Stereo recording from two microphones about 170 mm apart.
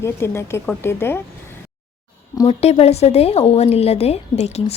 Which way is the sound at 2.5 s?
35° left (ahead or behind).